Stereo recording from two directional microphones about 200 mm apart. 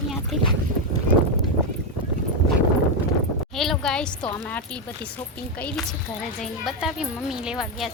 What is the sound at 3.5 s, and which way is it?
A woman's voice, centre (ahead or behind).